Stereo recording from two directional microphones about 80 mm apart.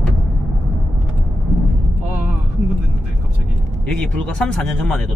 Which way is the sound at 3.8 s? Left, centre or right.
Centre.